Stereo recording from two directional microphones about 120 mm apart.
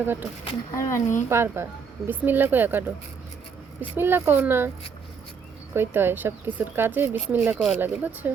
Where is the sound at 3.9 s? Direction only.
20° right (ahead or behind).